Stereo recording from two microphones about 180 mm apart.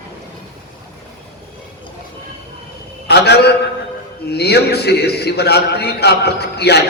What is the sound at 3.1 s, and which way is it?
A man's voice, 65° left (ahead or behind).